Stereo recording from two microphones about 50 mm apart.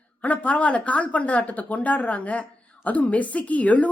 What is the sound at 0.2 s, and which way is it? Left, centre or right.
Speech, left.